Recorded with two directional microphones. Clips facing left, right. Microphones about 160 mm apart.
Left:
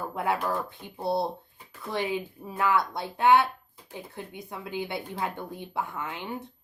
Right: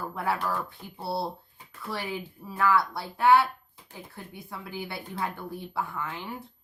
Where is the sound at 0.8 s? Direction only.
20° left (ahead or behind).